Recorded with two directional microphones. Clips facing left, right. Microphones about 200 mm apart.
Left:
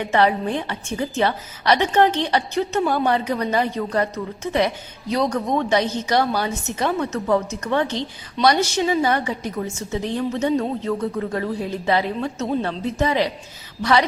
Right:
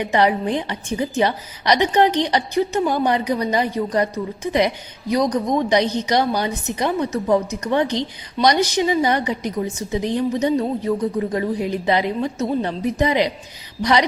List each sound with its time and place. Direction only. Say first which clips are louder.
0.0 s a woman's voice: right 1 dB; 15° right (ahead or behind)